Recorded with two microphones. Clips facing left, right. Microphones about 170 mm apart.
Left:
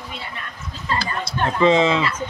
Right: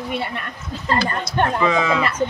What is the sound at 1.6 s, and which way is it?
Speech, 25° left (ahead or behind).